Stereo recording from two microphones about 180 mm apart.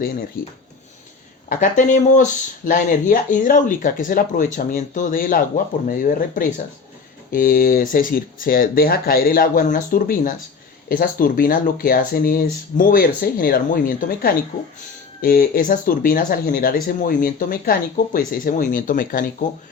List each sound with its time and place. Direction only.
1.5 s speech: 45° left (ahead or behind)